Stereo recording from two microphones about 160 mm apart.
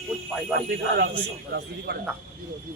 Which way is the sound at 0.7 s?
90° right.